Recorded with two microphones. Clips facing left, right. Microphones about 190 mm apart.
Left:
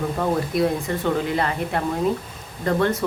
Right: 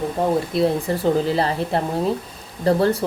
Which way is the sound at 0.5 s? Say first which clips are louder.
Right 2 dB; 30° right (ahead or behind).